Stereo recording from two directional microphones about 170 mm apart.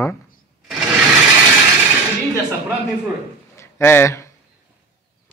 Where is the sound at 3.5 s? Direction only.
15° left (ahead or behind).